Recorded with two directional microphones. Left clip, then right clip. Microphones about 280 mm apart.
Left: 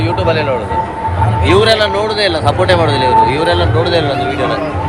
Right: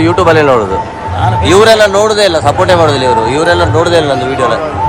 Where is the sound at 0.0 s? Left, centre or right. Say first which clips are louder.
Right 7 dB; right.